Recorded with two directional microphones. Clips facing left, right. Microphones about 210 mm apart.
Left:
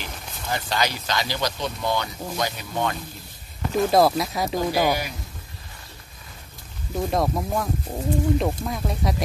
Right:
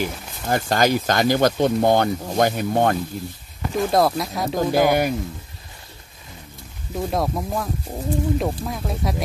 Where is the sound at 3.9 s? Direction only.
Centre (ahead or behind).